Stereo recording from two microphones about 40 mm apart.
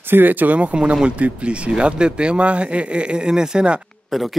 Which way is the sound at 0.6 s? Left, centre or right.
Right.